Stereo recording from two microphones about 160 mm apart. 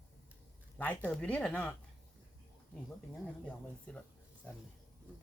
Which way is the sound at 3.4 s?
10° left (ahead or behind).